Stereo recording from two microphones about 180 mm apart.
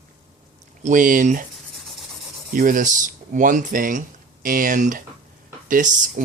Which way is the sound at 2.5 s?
50° right (ahead or behind).